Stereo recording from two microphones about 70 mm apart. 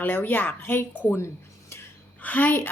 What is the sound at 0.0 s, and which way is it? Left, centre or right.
A woman's voice, left.